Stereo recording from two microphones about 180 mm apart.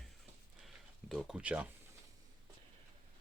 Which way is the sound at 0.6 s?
Centre (ahead or behind).